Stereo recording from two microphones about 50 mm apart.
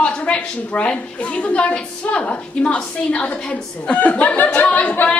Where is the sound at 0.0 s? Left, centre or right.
Left.